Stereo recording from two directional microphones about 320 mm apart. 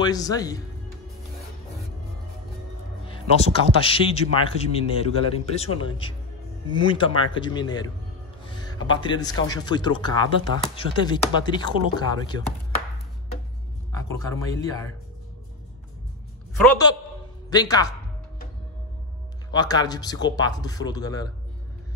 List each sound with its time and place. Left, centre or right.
0.0 s speech: centre
3.1 s a man's voice: centre
13.9 s speech: centre
16.5 s speech: centre
19.5 s speech: centre